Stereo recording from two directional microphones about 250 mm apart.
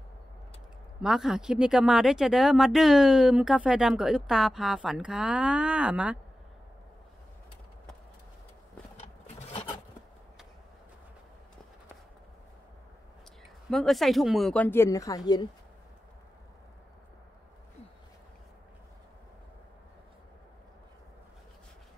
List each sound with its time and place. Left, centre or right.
1.0 s speech: centre
9.0 s a sound: left
13.7 s speech: centre